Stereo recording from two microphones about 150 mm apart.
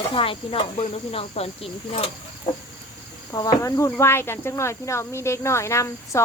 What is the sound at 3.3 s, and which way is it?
Speech, 25° left (ahead or behind).